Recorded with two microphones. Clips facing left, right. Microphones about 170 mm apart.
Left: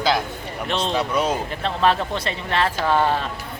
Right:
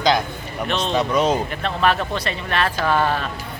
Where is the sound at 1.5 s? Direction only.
25° left (ahead or behind).